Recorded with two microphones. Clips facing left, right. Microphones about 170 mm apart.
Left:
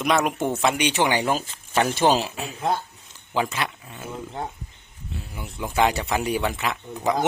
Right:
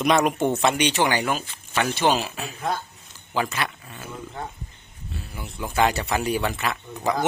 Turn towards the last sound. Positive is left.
turn(degrees=15)  # may be behind; listen again after turning